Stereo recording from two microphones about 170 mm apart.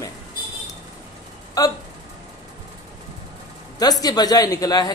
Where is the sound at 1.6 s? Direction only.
20° left (ahead or behind).